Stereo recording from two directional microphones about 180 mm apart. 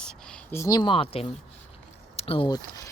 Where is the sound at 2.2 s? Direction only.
30° left (ahead or behind).